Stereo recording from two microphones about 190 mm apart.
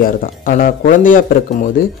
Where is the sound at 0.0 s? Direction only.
45° left (ahead or behind).